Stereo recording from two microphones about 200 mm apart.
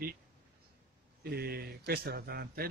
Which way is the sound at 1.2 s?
50° right (ahead or behind).